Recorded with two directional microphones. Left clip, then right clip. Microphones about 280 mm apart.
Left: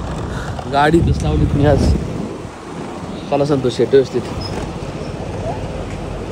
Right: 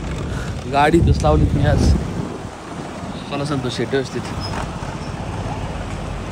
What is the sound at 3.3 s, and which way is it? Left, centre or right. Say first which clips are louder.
Speech: left 8 dB; centre.